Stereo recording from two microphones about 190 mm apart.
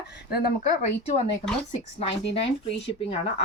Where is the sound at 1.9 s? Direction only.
30° left (ahead or behind).